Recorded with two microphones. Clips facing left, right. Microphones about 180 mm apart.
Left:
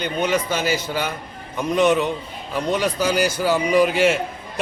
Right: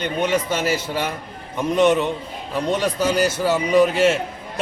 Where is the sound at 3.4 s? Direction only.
Centre (ahead or behind).